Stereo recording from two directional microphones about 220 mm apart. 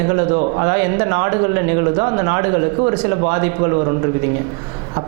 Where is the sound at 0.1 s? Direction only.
25° right (ahead or behind).